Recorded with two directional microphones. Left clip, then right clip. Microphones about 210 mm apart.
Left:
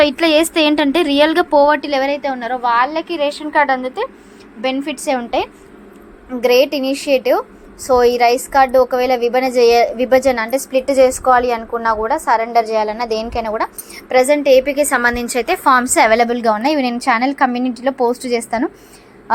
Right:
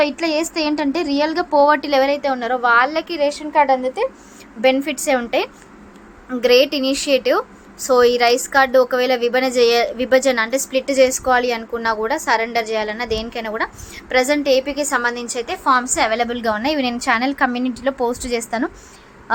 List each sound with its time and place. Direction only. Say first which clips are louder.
0.0 s a woman's voice: left 6 dB; 10° left (ahead or behind); by 3.1 s 10° right (ahead or behind)
3.1 s a woman's voice: left 1 dB; centre (ahead or behind)
14.6 s a woman's voice: left 5 dB; 15° left (ahead or behind)